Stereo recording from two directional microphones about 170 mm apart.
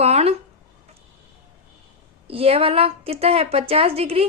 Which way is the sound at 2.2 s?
35° right (ahead or behind).